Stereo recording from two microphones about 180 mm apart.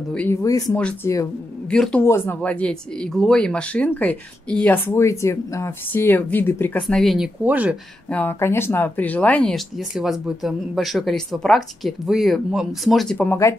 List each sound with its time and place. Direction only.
0.1 s speech: 10° left (ahead or behind)
0.7 s speech: 5° left (ahead or behind)
8.1 s speech: 10° left (ahead or behind)